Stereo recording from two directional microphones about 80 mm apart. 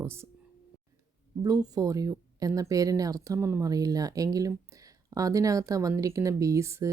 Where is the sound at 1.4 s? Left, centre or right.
Right.